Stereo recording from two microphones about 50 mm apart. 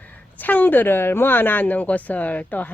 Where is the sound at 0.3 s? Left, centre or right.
Left.